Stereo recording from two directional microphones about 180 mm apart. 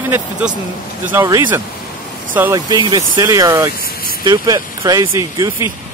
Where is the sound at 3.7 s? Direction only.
55° left (ahead or behind).